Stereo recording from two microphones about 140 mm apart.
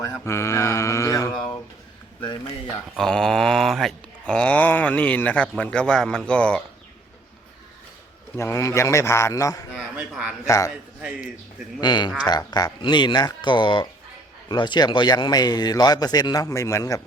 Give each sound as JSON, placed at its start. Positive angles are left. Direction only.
{"t": 0.1, "sound": "mantra", "side_deg": 20}
{"t": 2.9, "sound": "a sound", "side_deg": 5}
{"t": 8.4, "sound": "speech", "side_deg": 20}
{"t": 9.7, "sound": "a sound", "side_deg": -5}
{"t": 10.4, "sound": "speech", "side_deg": 20}
{"t": 10.7, "sound": "a man's voice", "side_deg": -5}
{"t": 11.8, "sound": "speech", "side_deg": 30}